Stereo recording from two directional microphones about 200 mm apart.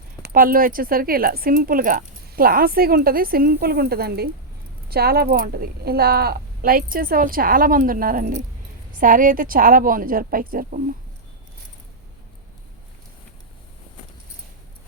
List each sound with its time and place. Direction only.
0.2 s speech: 45° right (ahead or behind)